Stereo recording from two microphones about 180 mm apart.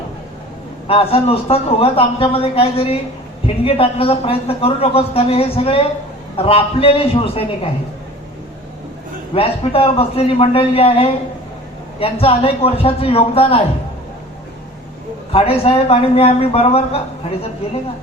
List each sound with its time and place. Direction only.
0.9 s a woman's voice: 30° left (ahead or behind)
9.3 s a woman's voice: 30° left (ahead or behind)
15.3 s a woman's voice: 30° left (ahead or behind)